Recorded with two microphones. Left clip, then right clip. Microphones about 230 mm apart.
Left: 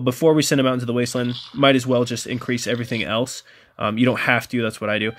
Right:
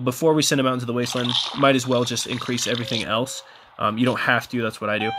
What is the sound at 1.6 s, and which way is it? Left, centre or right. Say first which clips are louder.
Speech: left 4 dB; centre.